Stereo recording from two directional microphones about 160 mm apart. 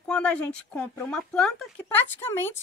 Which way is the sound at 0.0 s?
5° left (ahead or behind).